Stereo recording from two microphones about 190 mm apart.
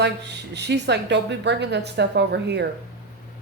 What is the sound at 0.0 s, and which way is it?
A woman's voice, 65° right (ahead or behind).